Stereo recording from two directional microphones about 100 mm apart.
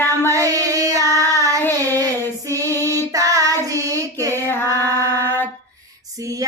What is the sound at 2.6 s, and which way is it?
Female singing, 25° left (ahead or behind).